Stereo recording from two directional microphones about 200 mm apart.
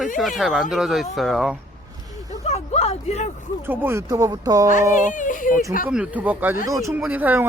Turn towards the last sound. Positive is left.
turn(degrees=-10)  # may be behind; listen again after turning